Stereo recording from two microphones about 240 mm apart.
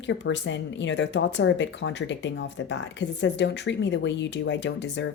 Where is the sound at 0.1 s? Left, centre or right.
Left.